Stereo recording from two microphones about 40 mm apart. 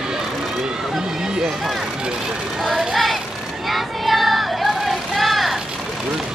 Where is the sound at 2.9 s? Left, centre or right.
Centre.